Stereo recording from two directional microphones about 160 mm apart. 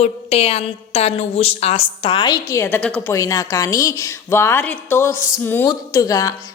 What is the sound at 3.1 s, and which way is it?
A woman's voice, 20° left (ahead or behind).